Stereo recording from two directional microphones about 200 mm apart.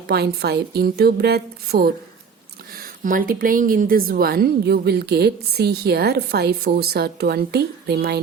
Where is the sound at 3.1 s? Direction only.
45° right (ahead or behind).